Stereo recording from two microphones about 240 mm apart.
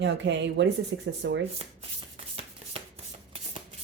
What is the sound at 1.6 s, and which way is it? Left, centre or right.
Speech, right.